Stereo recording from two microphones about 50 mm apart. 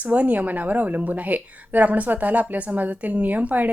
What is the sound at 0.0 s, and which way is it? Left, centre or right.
Speech, right.